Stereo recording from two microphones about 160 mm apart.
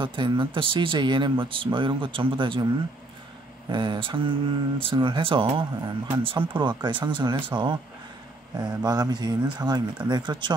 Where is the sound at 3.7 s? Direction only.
30° right (ahead or behind).